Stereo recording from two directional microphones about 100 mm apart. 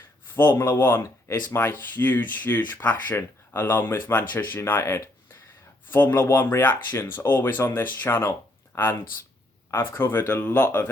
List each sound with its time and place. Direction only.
0.3 s speech: 25° left (ahead or behind)